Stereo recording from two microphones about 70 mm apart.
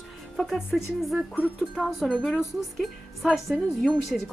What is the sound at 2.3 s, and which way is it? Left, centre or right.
Speech, centre.